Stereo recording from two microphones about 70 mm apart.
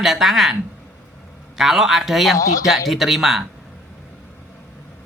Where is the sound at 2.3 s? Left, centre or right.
Left.